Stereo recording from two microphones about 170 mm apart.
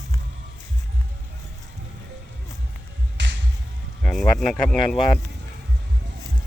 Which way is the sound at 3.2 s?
90° right.